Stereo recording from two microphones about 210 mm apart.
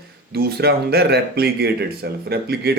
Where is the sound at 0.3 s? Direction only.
50° right (ahead or behind).